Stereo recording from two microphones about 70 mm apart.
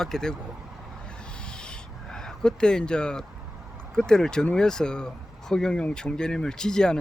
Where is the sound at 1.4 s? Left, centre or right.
Centre.